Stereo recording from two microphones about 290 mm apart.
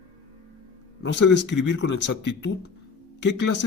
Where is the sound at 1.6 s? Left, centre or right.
Left.